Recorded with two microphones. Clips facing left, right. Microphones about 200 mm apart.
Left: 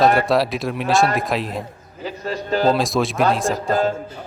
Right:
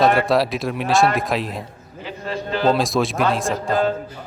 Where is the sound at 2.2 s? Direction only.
40° left (ahead or behind).